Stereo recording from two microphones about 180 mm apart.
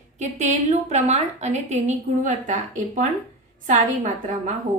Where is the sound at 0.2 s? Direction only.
40° right (ahead or behind).